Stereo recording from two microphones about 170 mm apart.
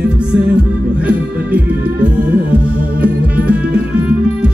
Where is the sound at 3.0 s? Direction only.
5° right (ahead or behind).